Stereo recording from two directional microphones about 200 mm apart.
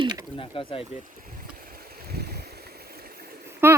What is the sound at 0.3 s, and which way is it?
Speech, 25° left (ahead or behind).